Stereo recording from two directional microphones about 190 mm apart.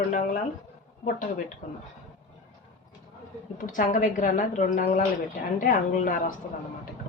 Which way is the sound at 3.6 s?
45° left (ahead or behind).